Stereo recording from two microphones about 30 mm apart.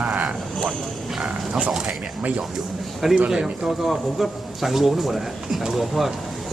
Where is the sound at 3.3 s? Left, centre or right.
Centre.